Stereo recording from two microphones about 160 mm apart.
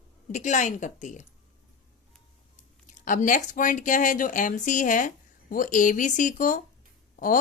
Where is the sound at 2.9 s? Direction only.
55° left (ahead or behind).